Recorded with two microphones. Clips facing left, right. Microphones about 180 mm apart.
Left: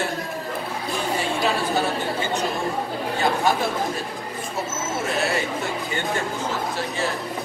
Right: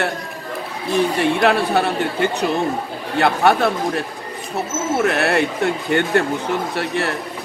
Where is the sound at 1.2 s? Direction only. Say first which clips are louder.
Right 5 dB; 65° right (ahead or behind).